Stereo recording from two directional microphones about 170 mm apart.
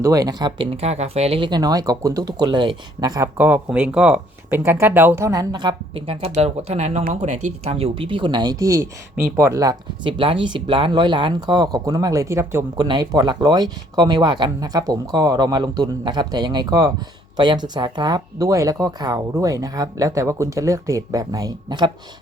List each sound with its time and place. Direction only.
0.0 s speech: 20° right (ahead or behind)
3.3 s speech: 10° right (ahead or behind)
12.7 s speech: 25° right (ahead or behind)